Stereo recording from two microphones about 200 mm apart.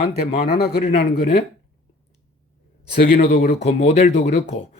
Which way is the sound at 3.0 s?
50° left (ahead or behind).